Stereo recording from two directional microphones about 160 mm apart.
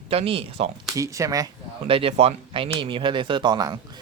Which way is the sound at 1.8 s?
35° right (ahead or behind).